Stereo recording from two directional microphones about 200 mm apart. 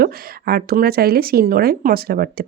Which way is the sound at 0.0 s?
50° right (ahead or behind).